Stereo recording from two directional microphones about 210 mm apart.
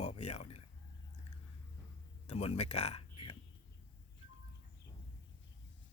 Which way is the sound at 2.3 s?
30° left (ahead or behind).